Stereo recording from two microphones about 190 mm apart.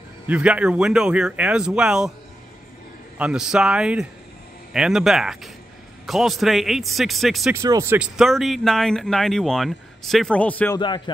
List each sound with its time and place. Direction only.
0.3 s speech: 5° right (ahead or behind)
3.2 s speech: 5° right (ahead or behind)
7.5 s speech: 15° right (ahead or behind)
8.2 s speech: centre (ahead or behind)